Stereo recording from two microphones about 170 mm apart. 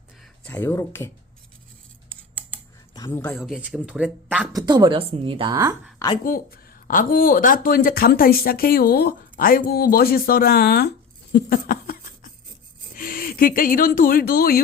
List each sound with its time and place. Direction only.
0.4 s speech: 15° left (ahead or behind)
2.0 s scissors: 10° left (ahead or behind)
2.9 s a sound: 20° left (ahead or behind)
3.2 s speech: centre (ahead or behind)
4.5 s speech: 25° right (ahead or behind)
6.2 s speech: 55° left (ahead or behind)